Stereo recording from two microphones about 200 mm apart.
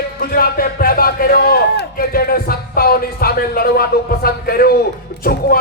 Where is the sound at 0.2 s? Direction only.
50° left (ahead or behind).